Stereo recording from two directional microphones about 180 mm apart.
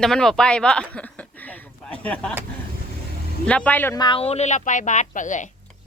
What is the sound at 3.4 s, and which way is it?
Speech, 5° left (ahead or behind).